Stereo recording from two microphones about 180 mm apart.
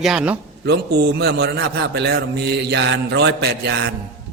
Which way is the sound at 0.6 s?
70° right (ahead or behind).